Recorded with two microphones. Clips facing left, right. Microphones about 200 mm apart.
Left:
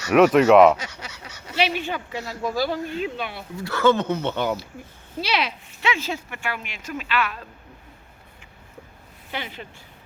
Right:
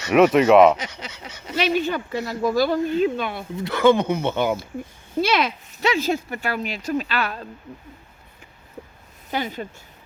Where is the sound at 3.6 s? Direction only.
20° right (ahead or behind).